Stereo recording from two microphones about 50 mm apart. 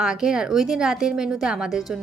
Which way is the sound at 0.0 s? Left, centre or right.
Centre.